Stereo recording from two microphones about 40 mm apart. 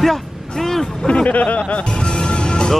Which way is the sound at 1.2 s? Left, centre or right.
Left.